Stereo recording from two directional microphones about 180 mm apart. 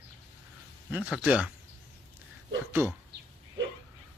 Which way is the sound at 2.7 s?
10° right (ahead or behind).